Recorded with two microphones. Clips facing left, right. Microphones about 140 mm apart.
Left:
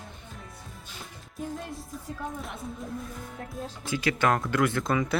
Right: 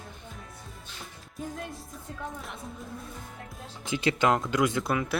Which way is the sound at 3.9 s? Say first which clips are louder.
Right 1 dB; 20° right (ahead or behind).